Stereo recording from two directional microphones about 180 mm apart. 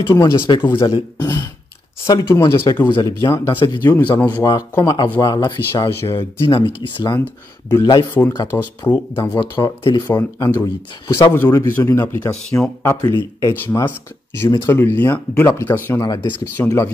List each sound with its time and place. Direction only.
0.1 s speech: 20° left (ahead or behind)
3.5 s speech: 25° left (ahead or behind)
8.5 s speech: 10° left (ahead or behind)